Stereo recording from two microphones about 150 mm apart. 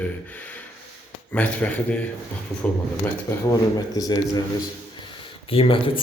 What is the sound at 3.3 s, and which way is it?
Speech, 15° left (ahead or behind).